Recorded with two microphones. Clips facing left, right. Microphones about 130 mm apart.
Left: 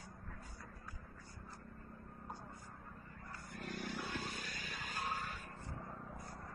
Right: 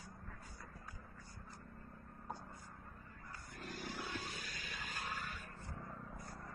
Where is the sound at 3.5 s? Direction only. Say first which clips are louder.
Left 3 dB; 55° left (ahead or behind); by 5.4 s 35° left (ahead or behind).